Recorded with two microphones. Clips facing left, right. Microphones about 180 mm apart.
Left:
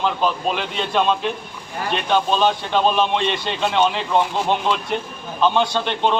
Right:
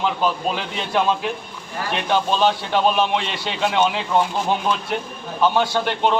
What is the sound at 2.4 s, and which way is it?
A man's voice, 10° right (ahead or behind).